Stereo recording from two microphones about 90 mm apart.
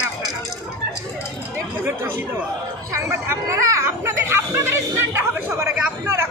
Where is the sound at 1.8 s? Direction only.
25° right (ahead or behind).